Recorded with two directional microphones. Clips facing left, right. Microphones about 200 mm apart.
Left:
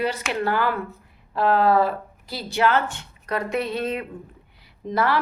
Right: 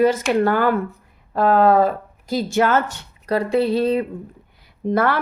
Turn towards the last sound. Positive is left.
turn(degrees=-50)  # may be behind; listen again after turning